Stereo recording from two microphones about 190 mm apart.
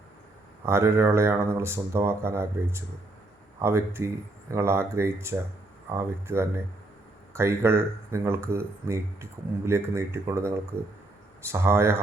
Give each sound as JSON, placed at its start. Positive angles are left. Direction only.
{"t": 0.6, "sound": "speech", "side_deg": -15}